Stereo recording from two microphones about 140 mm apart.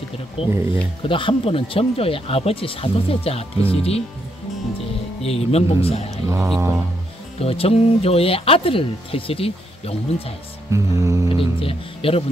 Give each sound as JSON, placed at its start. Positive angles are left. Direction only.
{"t": 0.4, "sound": "speech", "side_deg": 40}
{"t": 5.2, "sound": "speech", "side_deg": 45}
{"t": 6.2, "sound": "music", "side_deg": -20}
{"t": 7.3, "sound": "speech", "side_deg": 45}
{"t": 10.7, "sound": "music", "side_deg": -20}
{"t": 11.3, "sound": "speech", "side_deg": 40}